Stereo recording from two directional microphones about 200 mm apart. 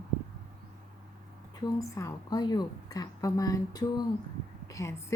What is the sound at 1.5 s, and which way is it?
A woman's voice, 15° left (ahead or behind).